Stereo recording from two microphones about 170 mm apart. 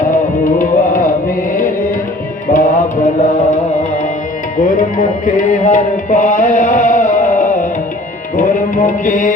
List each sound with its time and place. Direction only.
0.4 s tabla: 50° left (ahead or behind)
2.5 s mantra: 45° left (ahead or behind)
4.6 s music: 50° left (ahead or behind)